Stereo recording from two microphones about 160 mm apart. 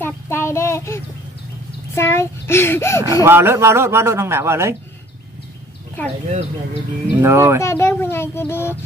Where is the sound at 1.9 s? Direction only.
15° left (ahead or behind).